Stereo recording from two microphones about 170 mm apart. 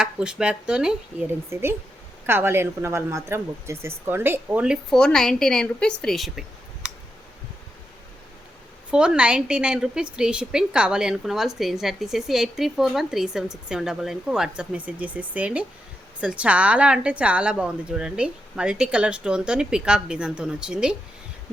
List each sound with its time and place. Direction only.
0.0 s a woman's voice: 5° right (ahead or behind)
1.5 s speech: 15° right (ahead or behind)
8.9 s a woman's voice: 5° right (ahead or behind)